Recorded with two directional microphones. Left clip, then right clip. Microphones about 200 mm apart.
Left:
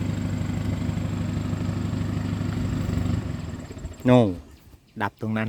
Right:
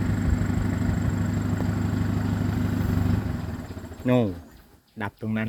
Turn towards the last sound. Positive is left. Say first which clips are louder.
# left 5 dB
turn(degrees=35)  # may be behind; listen again after turning